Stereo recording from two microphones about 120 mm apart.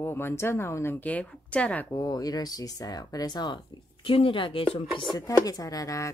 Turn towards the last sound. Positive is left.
turn(degrees=30)  # may be behind; listen again after turning